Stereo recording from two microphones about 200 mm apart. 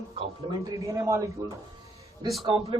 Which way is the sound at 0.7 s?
15° right (ahead or behind).